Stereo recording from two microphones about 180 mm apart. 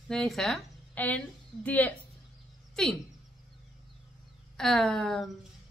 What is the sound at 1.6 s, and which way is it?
Speech, 10° left (ahead or behind).